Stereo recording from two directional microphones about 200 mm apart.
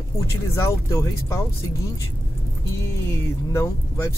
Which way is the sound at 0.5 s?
15° left (ahead or behind).